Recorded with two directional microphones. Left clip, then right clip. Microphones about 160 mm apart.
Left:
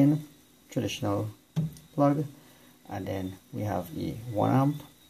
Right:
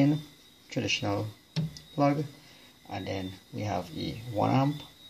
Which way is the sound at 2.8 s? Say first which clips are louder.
Left 1 dB; centre (ahead or behind).